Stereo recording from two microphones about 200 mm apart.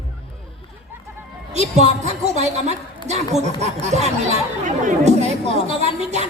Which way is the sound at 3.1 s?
35° right (ahead or behind).